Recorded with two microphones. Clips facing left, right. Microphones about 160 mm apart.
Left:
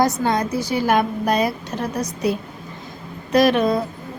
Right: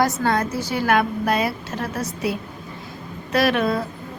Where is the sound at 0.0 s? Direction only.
15° left (ahead or behind).